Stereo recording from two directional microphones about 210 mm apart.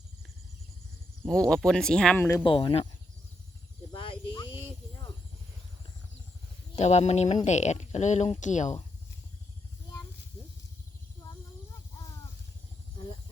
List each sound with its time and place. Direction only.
1.3 s speech: 5° left (ahead or behind)
2.4 s speech: 25° left (ahead or behind)
3.9 s a sound: 25° left (ahead or behind)
6.7 s speech: 30° left (ahead or behind)